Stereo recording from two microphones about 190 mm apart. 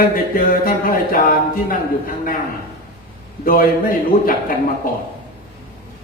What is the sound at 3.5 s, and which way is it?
Speech, 50° left (ahead or behind).